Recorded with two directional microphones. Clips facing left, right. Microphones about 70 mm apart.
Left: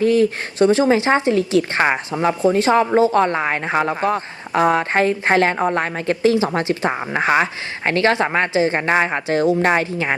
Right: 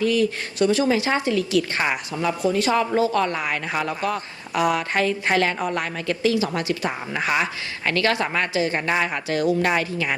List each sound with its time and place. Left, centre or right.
0.0 s a woman's voice: left